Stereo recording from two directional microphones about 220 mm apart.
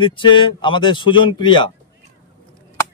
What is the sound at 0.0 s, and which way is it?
Speech, 20° left (ahead or behind).